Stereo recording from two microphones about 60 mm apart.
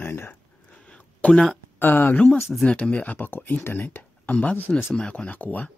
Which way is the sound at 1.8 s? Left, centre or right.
Left.